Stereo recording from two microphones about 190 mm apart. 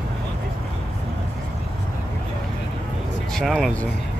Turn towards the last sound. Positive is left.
turn(degrees=0)  # may be behind; listen again after turning